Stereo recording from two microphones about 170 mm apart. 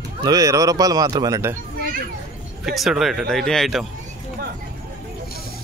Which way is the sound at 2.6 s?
Centre (ahead or behind).